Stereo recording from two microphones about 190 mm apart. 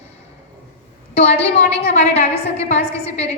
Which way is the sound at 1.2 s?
35° left (ahead or behind).